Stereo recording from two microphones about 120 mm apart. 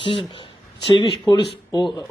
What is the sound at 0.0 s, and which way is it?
Speech, 50° left (ahead or behind).